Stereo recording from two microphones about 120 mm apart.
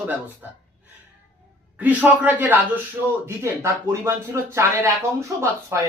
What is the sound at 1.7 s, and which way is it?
Speech, 10° right (ahead or behind).